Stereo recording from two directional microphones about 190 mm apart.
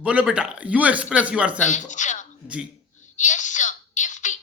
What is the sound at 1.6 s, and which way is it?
Speech, 40° left (ahead or behind).